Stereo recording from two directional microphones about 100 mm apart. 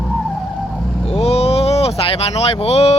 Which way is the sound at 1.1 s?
90° left.